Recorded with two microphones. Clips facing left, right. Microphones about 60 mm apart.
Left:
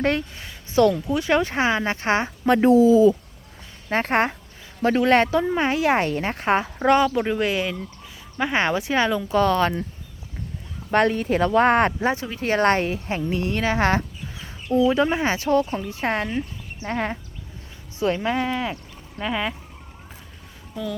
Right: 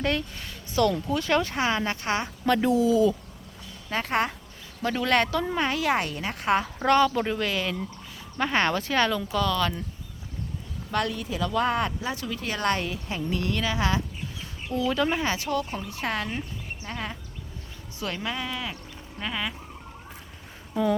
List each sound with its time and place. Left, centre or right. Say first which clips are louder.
0.0 s a woman's voice: left 5 dB; left
6.8 s speech: left 3 dB; centre
7.3 s speech: left 4 dB; left
9.3 s a woman's voice: left 6 dB; left
10.9 s speech: left 9 dB; left
12.1 s a woman's voice: left 8 dB; left
16.8 s a woman's voice: left 10 dB; left
18.0 s a woman's voice: left 9 dB; left
19.2 s speech: left 6 dB; centre